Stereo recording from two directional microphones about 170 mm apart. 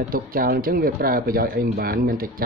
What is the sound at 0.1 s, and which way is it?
Speech, 60° right (ahead or behind).